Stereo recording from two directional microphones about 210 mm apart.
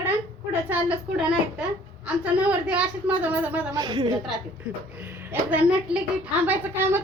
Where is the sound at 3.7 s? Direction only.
20° right (ahead or behind).